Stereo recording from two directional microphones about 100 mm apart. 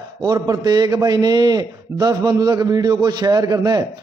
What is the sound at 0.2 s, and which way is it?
A man's voice, 40° right (ahead or behind).